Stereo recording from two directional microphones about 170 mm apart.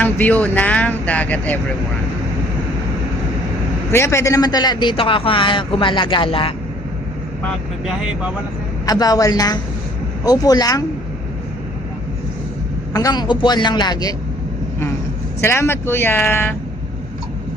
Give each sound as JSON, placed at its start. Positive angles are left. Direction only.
{"t": 0.0, "sound": "speech", "side_deg": 10}
{"t": 3.9, "sound": "a man's voice", "side_deg": 15}
{"t": 8.9, "sound": "a man's voice", "side_deg": 20}
{"t": 12.9, "sound": "a man's voice", "side_deg": 20}
{"t": 15.4, "sound": "speech", "side_deg": 15}